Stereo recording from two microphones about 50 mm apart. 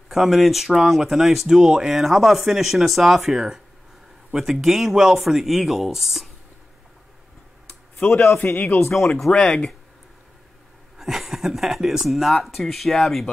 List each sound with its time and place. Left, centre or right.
0.1 s speech: centre
8.1 s speech: centre
8.6 s speech: left
9.2 s speech: centre
11.0 s speech: centre